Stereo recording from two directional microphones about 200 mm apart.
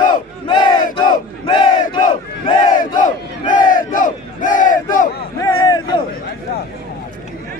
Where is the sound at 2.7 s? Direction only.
40° left (ahead or behind).